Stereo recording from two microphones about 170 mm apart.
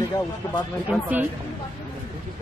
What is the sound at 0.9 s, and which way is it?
Speech, 10° right (ahead or behind).